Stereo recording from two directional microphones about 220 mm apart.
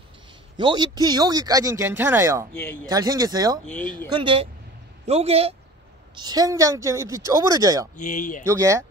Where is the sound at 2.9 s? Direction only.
15° right (ahead or behind).